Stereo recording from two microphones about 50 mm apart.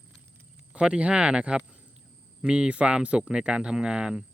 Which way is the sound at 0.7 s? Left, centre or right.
Right.